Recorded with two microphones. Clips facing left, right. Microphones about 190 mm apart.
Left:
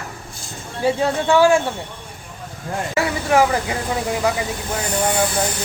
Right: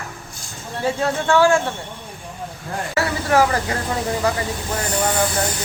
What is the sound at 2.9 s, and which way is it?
Speech, 15° left (ahead or behind).